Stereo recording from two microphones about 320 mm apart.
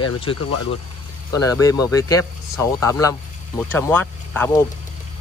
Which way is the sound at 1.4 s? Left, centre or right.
Centre.